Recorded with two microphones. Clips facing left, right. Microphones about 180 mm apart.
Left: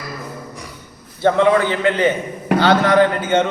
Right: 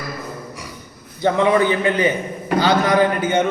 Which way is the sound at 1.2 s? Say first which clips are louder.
Left 2 dB; 15° right (ahead or behind).